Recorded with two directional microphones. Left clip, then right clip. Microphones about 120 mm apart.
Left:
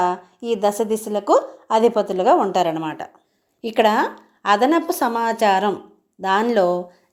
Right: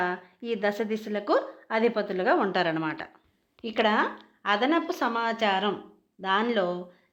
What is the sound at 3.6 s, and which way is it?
A woman's voice, 40° left (ahead or behind).